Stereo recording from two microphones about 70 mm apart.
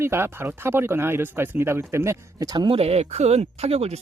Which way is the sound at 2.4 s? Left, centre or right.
Right.